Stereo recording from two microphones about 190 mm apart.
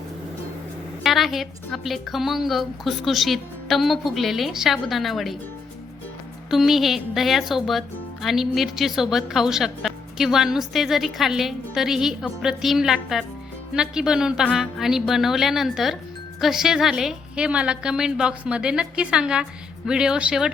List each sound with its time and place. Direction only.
1.0 s speech: centre (ahead or behind)
6.5 s speech: centre (ahead or behind)